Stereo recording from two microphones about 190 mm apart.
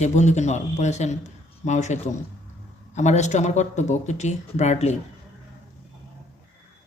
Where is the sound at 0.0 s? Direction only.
35° left (ahead or behind).